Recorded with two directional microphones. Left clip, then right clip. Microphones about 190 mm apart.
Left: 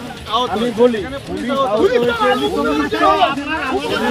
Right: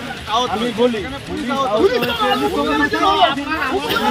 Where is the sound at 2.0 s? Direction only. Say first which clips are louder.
Left 2 dB; centre (ahead or behind).